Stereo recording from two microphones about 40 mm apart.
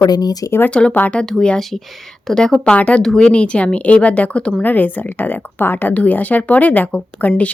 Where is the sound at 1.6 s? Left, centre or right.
Centre.